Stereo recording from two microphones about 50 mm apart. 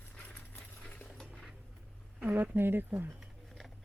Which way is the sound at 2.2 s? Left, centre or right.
Right.